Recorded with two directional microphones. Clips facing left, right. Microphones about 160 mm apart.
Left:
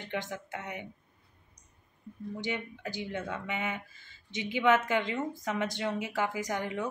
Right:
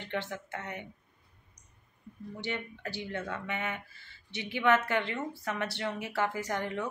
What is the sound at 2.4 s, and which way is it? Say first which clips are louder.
Speech: even; 15° left (ahead or behind).